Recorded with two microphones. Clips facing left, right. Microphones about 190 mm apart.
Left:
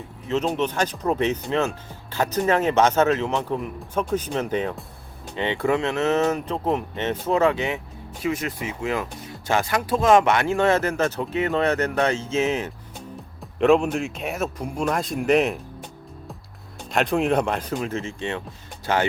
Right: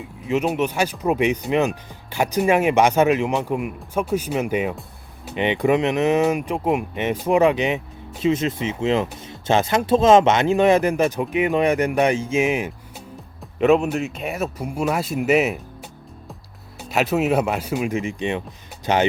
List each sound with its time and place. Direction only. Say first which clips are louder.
0.3 s speech: right 2 dB; 10° right (ahead or behind)
16.9 s speech: right 1 dB; 5° right (ahead or behind)